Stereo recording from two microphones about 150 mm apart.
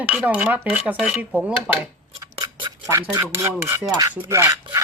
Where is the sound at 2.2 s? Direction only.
25° right (ahead or behind).